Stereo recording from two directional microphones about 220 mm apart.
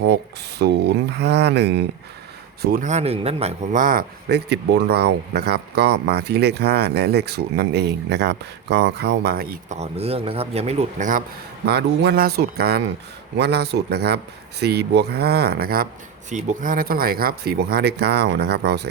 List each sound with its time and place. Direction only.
0.6 s speech: 50° right (ahead or behind)
9.7 s speech: 30° right (ahead or behind)
11.6 s speech: 50° right (ahead or behind)